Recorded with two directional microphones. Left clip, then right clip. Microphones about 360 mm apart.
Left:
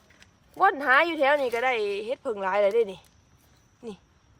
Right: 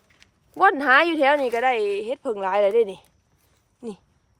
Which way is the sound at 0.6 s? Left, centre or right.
Right.